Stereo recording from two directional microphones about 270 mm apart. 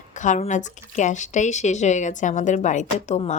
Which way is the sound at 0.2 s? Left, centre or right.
Left.